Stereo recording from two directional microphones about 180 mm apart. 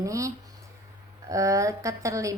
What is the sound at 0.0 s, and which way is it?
Speech, 20° right (ahead or behind).